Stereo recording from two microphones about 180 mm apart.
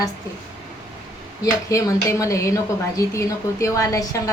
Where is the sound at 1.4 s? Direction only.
15° left (ahead or behind).